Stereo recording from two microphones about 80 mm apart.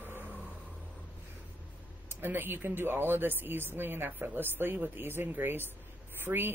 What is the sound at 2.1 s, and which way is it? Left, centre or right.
Speech, right.